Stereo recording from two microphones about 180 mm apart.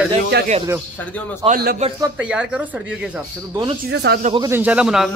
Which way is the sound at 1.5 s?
60° right (ahead or behind).